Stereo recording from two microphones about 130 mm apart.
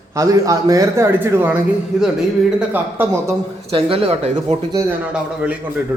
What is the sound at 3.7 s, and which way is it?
Speech, 50° right (ahead or behind).